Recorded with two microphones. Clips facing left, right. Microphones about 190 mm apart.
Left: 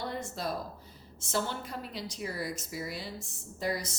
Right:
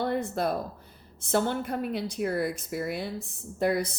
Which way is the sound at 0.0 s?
60° right (ahead or behind).